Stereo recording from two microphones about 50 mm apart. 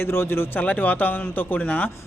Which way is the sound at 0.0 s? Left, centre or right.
Left.